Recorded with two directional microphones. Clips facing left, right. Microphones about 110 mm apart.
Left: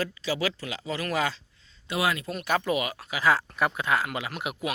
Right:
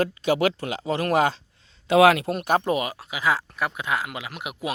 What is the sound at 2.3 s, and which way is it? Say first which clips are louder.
Speech: right 4 dB; 45° right (ahead or behind).